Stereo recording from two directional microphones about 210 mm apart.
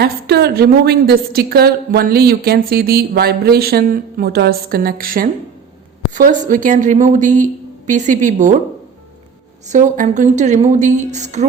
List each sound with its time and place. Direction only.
0.0 s a woman's voice: 50° right (ahead or behind)
9.6 s speech: 35° right (ahead or behind)